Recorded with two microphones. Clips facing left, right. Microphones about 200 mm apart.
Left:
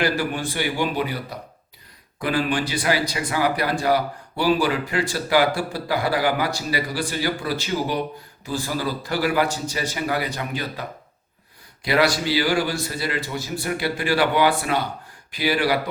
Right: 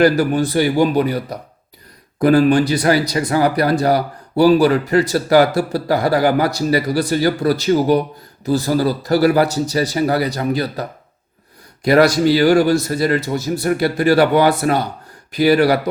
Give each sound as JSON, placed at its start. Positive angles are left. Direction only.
{"t": 0.0, "sound": "a man's voice", "side_deg": -40}